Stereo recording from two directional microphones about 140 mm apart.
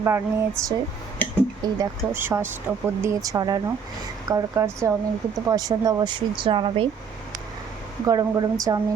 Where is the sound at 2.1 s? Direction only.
15° right (ahead or behind); by 6.8 s 35° right (ahead or behind).